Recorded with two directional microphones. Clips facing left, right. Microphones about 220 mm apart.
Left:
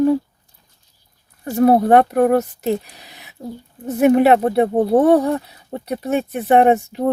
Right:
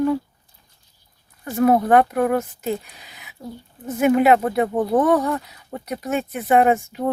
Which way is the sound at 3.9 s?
35° left (ahead or behind).